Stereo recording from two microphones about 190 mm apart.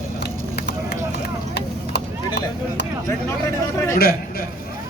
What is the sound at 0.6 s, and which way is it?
Run, 60° left (ahead or behind).